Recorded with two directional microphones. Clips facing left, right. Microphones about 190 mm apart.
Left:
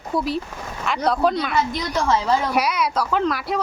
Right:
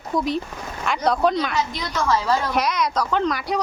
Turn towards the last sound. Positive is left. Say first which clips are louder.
# even
turn(degrees=0)  # may be behind; listen again after turning